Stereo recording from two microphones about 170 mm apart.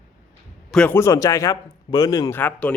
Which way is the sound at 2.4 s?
10° left (ahead or behind).